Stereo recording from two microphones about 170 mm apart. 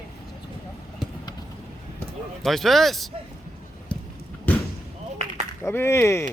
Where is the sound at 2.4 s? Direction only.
Centre (ahead or behind).